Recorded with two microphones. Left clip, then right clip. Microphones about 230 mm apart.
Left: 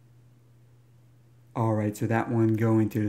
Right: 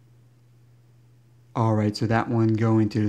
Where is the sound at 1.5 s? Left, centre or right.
Centre.